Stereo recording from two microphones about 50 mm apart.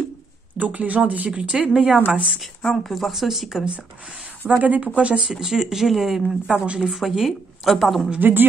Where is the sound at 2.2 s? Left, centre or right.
Centre.